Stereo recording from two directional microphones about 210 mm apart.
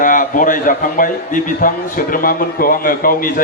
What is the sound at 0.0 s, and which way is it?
A man's voice, 40° left (ahead or behind).